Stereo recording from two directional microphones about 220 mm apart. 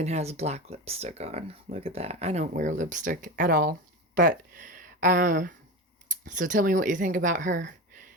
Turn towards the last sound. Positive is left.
turn(degrees=-35)  # may be behind; listen again after turning